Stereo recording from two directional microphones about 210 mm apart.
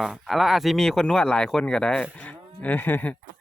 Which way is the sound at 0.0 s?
Centre (ahead or behind).